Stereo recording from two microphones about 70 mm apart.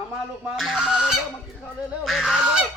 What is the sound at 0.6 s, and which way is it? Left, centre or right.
Goose, centre.